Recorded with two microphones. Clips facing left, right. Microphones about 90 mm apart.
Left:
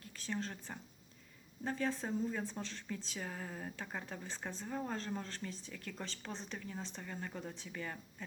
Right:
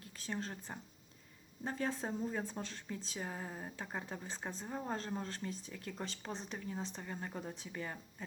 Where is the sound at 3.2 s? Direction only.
25° right (ahead or behind).